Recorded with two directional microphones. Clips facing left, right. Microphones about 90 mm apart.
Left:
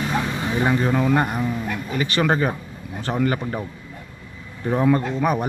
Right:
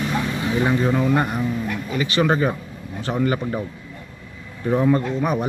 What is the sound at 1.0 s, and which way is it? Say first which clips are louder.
Speech: even; 40° left (ahead or behind).